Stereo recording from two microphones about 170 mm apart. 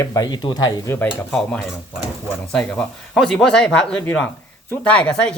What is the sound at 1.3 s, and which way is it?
A man's voice, 5° left (ahead or behind).